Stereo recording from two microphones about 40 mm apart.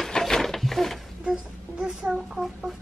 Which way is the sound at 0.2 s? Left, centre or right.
Centre.